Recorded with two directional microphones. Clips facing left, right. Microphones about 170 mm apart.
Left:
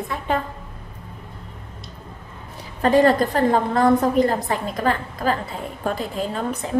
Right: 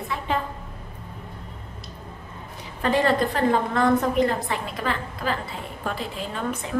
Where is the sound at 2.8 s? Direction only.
45° left (ahead or behind).